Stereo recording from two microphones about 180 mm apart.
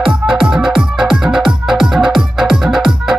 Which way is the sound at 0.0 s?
5° right (ahead or behind).